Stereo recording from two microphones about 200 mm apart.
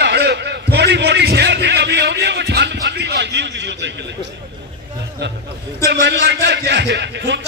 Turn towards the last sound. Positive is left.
turn(degrees=-60)  # may be behind; listen again after turning